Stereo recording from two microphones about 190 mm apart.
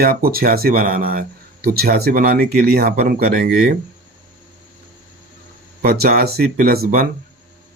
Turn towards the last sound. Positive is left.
turn(degrees=-50)  # may be behind; listen again after turning